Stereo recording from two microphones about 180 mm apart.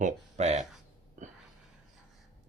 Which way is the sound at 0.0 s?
40° right (ahead or behind).